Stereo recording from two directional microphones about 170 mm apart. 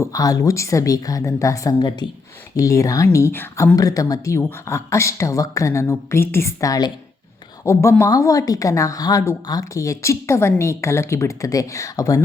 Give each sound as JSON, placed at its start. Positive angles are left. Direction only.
{"t": 0.0, "sound": "a woman's voice", "side_deg": 20}